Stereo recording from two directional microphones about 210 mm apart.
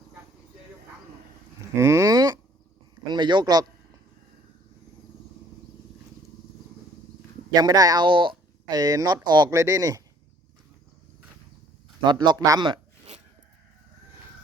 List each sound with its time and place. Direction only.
1.7 s a sound: 15° right (ahead or behind)
3.1 s a man's voice: 20° right (ahead or behind)
7.5 s speech: 20° right (ahead or behind)
12.0 s speech: 20° right (ahead or behind)